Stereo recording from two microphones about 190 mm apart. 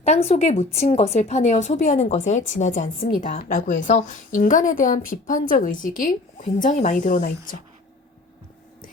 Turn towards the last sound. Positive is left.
turn(degrees=50)  # may be behind; listen again after turning